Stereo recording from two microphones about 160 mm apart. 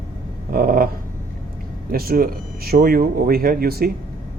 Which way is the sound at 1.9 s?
65° right (ahead or behind).